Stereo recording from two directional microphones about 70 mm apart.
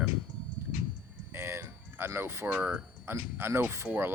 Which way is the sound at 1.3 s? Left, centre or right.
Right.